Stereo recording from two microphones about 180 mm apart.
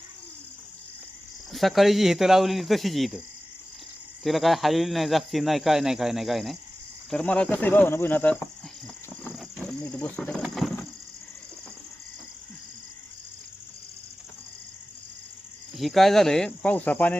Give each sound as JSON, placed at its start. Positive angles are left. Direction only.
{"t": 1.5, "sound": "speech", "side_deg": 0}
{"t": 4.2, "sound": "speech", "side_deg": 0}
{"t": 9.3, "sound": "a sound", "side_deg": 0}
{"t": 15.8, "sound": "speech", "side_deg": 0}